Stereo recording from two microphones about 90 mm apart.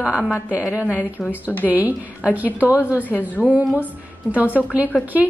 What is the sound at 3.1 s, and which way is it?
Speech, 5° right (ahead or behind).